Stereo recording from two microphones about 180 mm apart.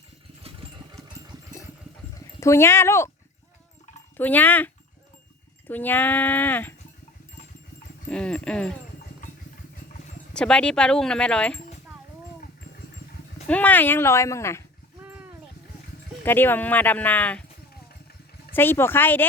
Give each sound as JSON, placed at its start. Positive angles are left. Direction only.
{"t": 0.6, "sound": "engine", "side_deg": -30}
{"t": 2.4, "sound": "speech", "side_deg": 15}
{"t": 4.2, "sound": "speech", "side_deg": 10}
{"t": 8.1, "sound": "speech", "side_deg": 5}
{"t": 10.3, "sound": "speech", "side_deg": 5}
{"t": 13.5, "sound": "speech", "side_deg": 10}
{"t": 16.2, "sound": "speech", "side_deg": 10}
{"t": 18.5, "sound": "speech", "side_deg": 10}